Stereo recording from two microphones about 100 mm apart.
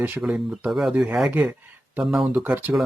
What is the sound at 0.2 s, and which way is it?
Speech, 5° right (ahead or behind).